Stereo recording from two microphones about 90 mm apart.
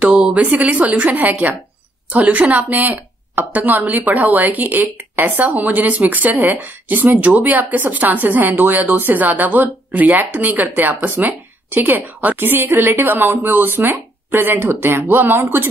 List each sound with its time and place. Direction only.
0.0 s speech: 10° right (ahead or behind)